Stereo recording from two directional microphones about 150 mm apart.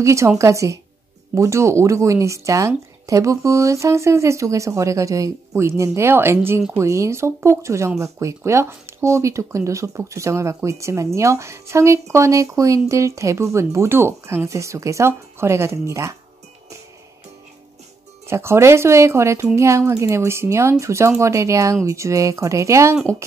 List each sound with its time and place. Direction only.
0.0 s speech: 20° right (ahead or behind)
18.2 s speech: 15° right (ahead or behind)